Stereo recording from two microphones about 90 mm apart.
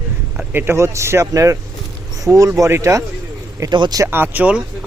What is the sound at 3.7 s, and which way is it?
Speech, 60° right (ahead or behind).